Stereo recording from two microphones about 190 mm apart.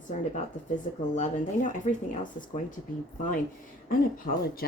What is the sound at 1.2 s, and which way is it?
Speech, 40° left (ahead or behind).